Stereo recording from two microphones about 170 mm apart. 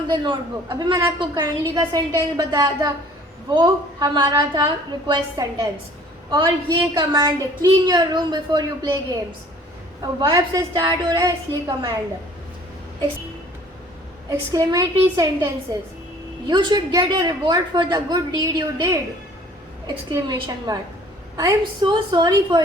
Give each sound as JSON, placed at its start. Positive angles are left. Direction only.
{"t": 0.1, "sound": "a woman's voice", "side_deg": -25}
{"t": 14.3, "sound": "a woman's voice", "side_deg": -20}
{"t": 16.5, "sound": "a woman's voice", "side_deg": -25}